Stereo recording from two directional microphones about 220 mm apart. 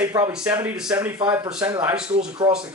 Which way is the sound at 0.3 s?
5° right (ahead or behind).